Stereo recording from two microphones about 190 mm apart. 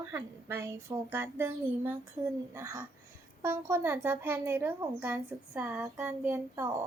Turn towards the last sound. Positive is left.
turn(degrees=-15)  # may be behind; listen again after turning